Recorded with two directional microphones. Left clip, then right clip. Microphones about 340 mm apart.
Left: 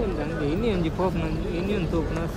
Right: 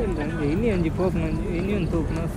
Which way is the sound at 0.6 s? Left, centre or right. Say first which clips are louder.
Right 1 dB; centre.